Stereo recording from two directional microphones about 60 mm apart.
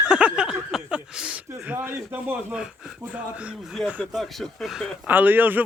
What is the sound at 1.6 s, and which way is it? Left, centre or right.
Speech, right.